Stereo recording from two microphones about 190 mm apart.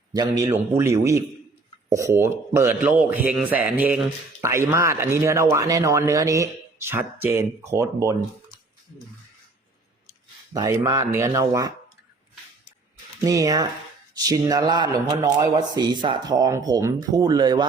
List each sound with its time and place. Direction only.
0.1 s a man's voice: 20° right (ahead or behind)
10.5 s a man's voice: 20° right (ahead or behind)
13.2 s speech: 20° right (ahead or behind)